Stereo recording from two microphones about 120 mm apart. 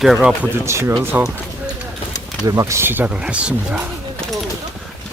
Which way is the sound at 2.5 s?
25° right (ahead or behind).